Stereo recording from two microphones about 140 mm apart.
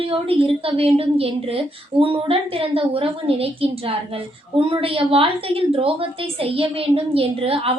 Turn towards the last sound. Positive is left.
turn(degrees=-40)  # may be behind; listen again after turning